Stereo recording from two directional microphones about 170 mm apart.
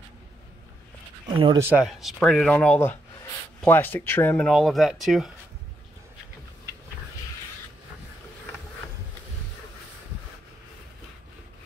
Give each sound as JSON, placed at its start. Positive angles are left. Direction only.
{"t": 1.2, "sound": "speech", "side_deg": -30}
{"t": 1.6, "sound": "speech", "side_deg": -10}